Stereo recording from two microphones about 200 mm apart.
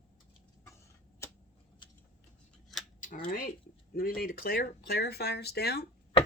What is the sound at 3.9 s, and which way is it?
Speech, 45° left (ahead or behind).